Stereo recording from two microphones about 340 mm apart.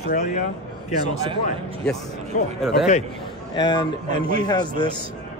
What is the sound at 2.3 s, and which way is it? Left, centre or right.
Speech, left.